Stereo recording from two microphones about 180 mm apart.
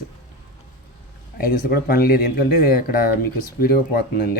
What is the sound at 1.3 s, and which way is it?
Speech, 55° left (ahead or behind).